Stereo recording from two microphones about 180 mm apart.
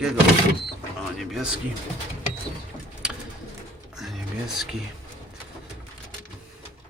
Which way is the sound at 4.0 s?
Centre (ahead or behind).